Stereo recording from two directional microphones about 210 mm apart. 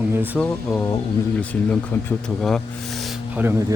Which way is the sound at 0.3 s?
5° left (ahead or behind).